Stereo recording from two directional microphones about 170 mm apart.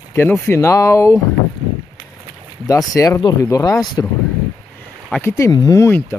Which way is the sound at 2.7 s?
20° left (ahead or behind).